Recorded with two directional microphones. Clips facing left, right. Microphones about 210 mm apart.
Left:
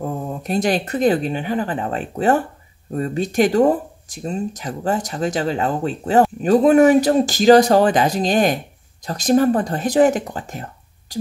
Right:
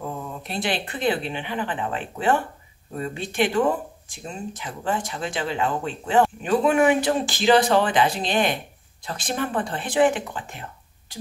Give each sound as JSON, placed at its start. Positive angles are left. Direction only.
{"t": 0.0, "sound": "speech", "side_deg": 45}